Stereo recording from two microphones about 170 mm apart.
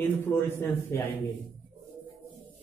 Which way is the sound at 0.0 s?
15° left (ahead or behind).